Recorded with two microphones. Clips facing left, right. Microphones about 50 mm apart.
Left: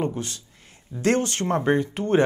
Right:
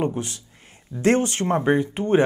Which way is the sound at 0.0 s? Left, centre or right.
Centre.